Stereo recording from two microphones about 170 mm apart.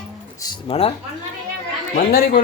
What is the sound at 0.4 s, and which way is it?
Speech, 30° left (ahead or behind).